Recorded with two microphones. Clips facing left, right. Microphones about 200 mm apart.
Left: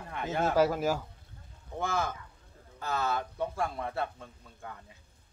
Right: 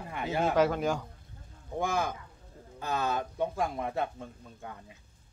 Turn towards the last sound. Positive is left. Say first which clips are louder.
# right 2 dB
turn(degrees=-15)  # may be behind; listen again after turning